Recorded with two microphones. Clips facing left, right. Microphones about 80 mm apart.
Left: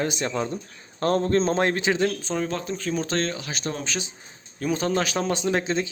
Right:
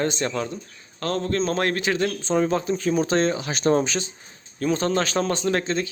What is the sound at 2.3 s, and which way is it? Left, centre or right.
Speech, centre.